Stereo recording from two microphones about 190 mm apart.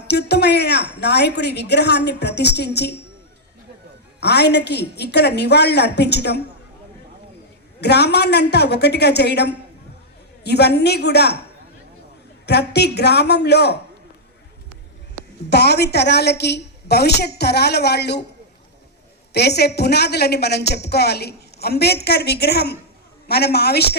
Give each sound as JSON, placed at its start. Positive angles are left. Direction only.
{"t": 0.1, "sound": "a woman's voice", "side_deg": 60}
{"t": 4.2, "sound": "a woman's voice", "side_deg": 60}
{"t": 7.8, "sound": "a woman's voice", "side_deg": 60}
{"t": 12.5, "sound": "a woman's voice", "side_deg": 60}
{"t": 15.4, "sound": "a woman's voice", "side_deg": 60}
{"t": 19.3, "sound": "a woman's voice", "side_deg": 60}